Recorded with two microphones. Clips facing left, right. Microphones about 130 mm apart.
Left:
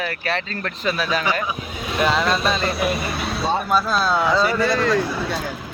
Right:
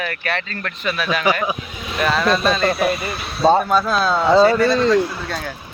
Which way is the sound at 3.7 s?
5° left (ahead or behind).